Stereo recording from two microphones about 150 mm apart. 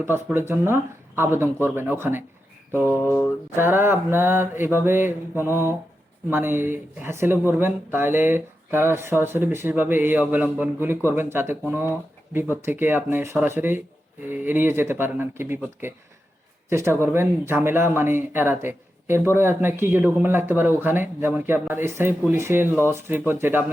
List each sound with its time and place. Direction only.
0.0 s speech: 15° right (ahead or behind)
2.8 s mantra: 15° left (ahead or behind)
3.5 s speech: 15° right (ahead or behind)